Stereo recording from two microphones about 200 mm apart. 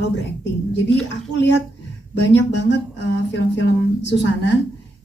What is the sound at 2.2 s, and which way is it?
A woman's voice, 60° left (ahead or behind).